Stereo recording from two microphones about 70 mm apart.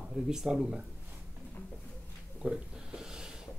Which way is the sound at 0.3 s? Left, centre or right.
Centre.